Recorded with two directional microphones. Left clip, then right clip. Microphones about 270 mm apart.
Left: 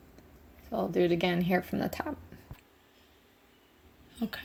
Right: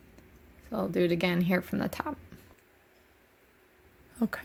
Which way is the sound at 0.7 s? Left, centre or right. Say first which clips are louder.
Even; right.